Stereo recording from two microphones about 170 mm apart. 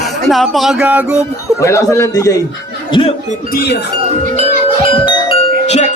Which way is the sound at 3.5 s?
70° left (ahead or behind).